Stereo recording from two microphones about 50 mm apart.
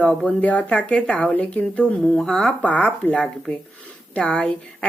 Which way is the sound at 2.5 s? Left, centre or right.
Left.